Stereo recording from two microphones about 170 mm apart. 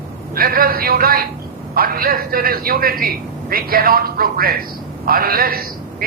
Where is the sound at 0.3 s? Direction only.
60° right (ahead or behind).